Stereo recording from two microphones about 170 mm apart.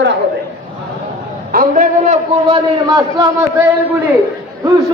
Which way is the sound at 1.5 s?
45° right (ahead or behind).